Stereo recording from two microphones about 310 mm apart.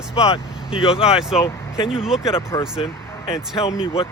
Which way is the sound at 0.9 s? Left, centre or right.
Centre.